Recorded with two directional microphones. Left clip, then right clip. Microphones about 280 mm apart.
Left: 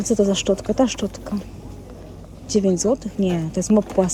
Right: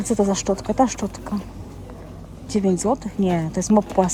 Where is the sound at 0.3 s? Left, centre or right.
Centre.